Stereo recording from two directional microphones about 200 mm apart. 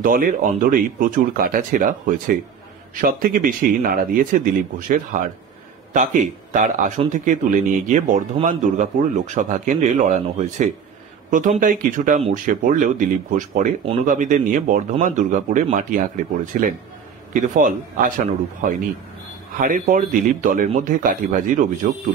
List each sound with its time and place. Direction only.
0.0 s speech: 45° right (ahead or behind)
6.5 s speech: 40° right (ahead or behind)